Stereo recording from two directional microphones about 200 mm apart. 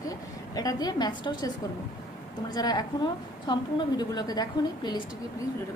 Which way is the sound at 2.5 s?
20° left (ahead or behind).